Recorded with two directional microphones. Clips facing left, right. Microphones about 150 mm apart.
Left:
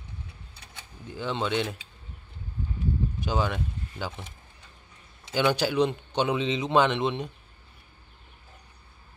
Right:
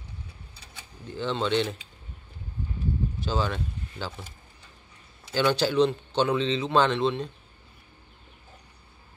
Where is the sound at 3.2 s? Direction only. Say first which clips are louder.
Even; 15° left (ahead or behind).